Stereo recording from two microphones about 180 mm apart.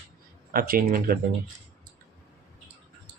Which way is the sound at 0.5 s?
55° right (ahead or behind).